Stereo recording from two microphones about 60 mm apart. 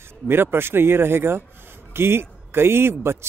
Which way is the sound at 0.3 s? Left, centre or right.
Right.